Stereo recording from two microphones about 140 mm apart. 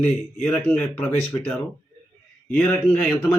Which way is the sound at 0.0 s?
10° left (ahead or behind).